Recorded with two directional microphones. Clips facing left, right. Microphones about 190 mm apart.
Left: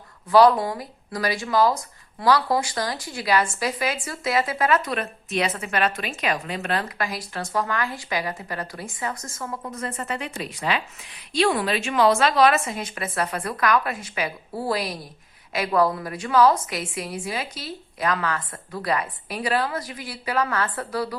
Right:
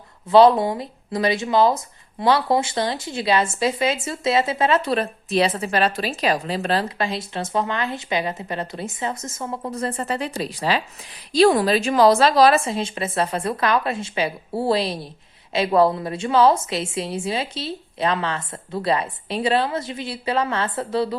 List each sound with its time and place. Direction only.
0.3 s speech: 25° right (ahead or behind)